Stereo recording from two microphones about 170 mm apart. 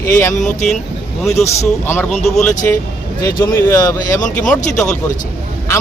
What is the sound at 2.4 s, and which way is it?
Speech, 45° left (ahead or behind).